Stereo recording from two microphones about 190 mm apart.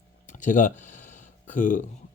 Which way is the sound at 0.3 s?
40° left (ahead or behind).